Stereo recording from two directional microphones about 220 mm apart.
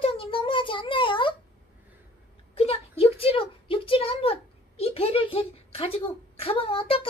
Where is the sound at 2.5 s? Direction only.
25° left (ahead or behind).